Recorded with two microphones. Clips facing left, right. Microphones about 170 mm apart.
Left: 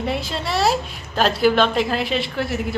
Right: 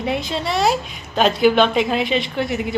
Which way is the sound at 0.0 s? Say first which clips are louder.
Right 2 dB; centre (ahead or behind).